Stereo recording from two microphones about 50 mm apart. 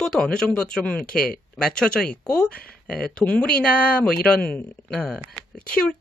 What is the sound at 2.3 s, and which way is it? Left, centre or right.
Speech, left.